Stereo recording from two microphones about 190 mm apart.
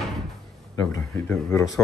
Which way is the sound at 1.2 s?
10° left (ahead or behind).